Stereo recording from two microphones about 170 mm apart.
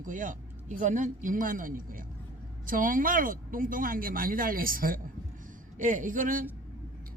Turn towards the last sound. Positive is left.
turn(degrees=-50)  # may be behind; listen again after turning